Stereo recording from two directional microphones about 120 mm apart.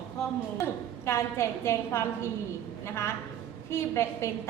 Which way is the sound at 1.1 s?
20° left (ahead or behind).